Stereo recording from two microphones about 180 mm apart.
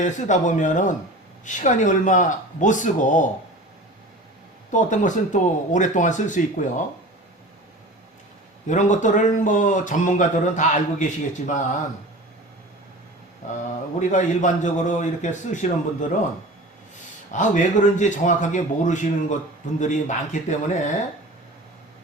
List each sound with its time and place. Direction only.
0.0 s speech: 45° left (ahead or behind)
4.7 s speech: 45° left (ahead or behind)
8.6 s speech: 45° left (ahead or behind)
14.1 s speech: 45° left (ahead or behind)
17.3 s speech: 45° left (ahead or behind)